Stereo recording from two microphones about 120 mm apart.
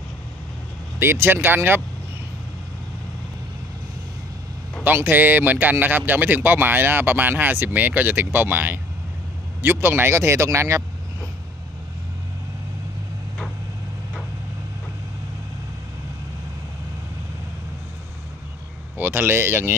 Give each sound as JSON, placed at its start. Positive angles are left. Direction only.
{"t": 0.9, "sound": "speech", "side_deg": -20}
{"t": 4.8, "sound": "speech", "side_deg": -15}
{"t": 18.9, "sound": "speech", "side_deg": -15}